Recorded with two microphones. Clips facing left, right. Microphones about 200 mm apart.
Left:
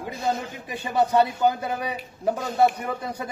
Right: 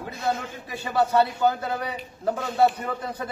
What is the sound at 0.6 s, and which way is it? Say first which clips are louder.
A man's voice: left 1 dB; 15° left (ahead or behind).